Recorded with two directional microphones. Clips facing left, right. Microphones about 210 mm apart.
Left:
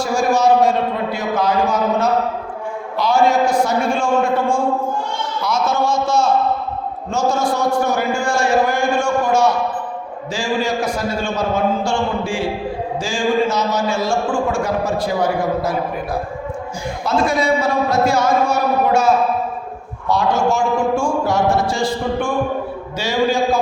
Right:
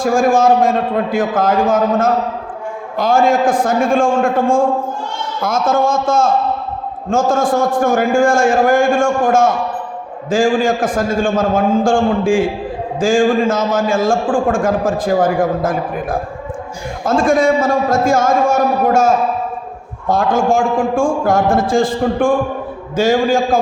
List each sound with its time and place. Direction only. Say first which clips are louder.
0.0 s a man's voice: right 4 dB; 50° right (ahead or behind)